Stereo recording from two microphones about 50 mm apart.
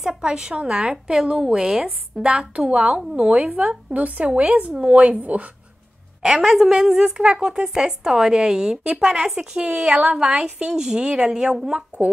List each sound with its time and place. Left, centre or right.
0.2 s a woman's voice: centre
3.2 s a woman's voice: right
6.2 s a woman's voice: centre
9.1 s a woman's voice: centre
12.0 s a woman's voice: right